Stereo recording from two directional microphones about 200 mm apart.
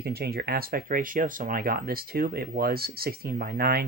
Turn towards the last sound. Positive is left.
turn(degrees=-50)  # may be behind; listen again after turning